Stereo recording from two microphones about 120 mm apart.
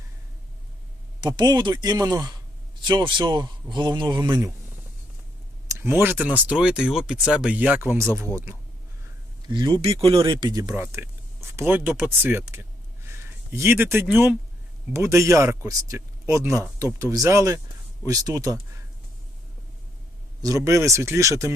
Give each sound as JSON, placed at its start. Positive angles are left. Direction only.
{"t": 1.2, "sound": "a man's voice", "side_deg": -35}
{"t": 5.6, "sound": "speech", "side_deg": -20}
{"t": 9.5, "sound": "a man's voice", "side_deg": -35}
{"t": 9.8, "sound": "speech", "side_deg": -50}
{"t": 10.2, "sound": "a man's voice", "side_deg": -40}
{"t": 10.6, "sound": "a man's voice", "side_deg": -25}
{"t": 20.4, "sound": "speech", "side_deg": -25}